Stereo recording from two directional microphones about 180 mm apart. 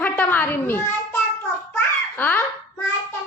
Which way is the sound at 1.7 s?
10° left (ahead or behind).